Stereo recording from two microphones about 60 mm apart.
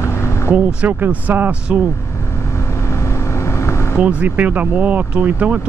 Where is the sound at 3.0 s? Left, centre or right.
Left.